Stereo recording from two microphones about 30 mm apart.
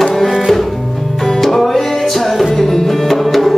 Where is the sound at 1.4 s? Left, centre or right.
Centre.